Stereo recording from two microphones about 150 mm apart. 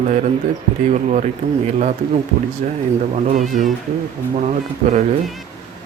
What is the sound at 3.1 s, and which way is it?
Speech, 55° right (ahead or behind).